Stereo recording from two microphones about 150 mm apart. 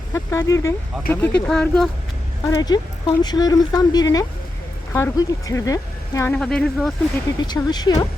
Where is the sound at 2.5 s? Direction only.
25° left (ahead or behind).